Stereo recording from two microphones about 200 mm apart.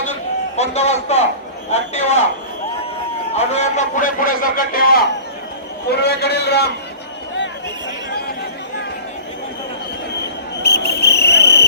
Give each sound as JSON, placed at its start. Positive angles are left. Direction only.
{"t": 0.5, "sound": "a man's voice", "side_deg": 35}
{"t": 3.3, "sound": "a man's voice", "side_deg": 35}
{"t": 10.6, "sound": "vehicle", "side_deg": 55}